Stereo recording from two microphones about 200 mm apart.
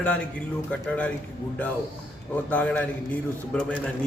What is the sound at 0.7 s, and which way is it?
Speech, 5° left (ahead or behind).